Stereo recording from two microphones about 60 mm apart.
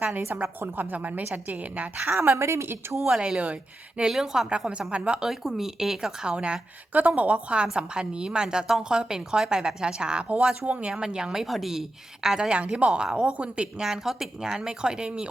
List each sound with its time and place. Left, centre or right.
0.4 s a woman's voice: right
2.4 s speech: right
3.0 s a woman's voice: centre
4.0 s a woman's voice: centre
5.3 s a woman's voice: centre
13.8 s a woman's voice: centre